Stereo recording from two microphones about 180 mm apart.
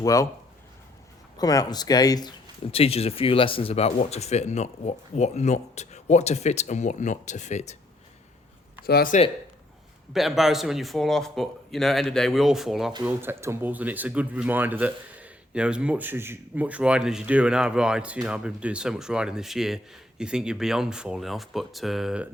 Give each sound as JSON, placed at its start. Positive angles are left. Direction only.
{"t": 0.0, "sound": "speech", "side_deg": 20}
{"t": 1.4, "sound": "speech", "side_deg": 20}
{"t": 2.7, "sound": "speech", "side_deg": 35}
{"t": 8.9, "sound": "speech", "side_deg": 60}
{"t": 10.1, "sound": "speech", "side_deg": 0}
{"t": 13.1, "sound": "speech", "side_deg": -15}